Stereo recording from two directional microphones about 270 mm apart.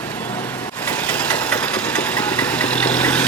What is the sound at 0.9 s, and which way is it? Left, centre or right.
Engine, centre.